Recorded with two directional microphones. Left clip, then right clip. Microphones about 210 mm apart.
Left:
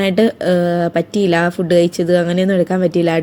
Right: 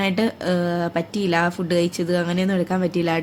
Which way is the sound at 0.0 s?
15° left (ahead or behind).